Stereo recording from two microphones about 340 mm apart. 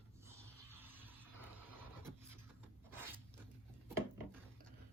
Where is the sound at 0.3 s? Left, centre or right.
Centre.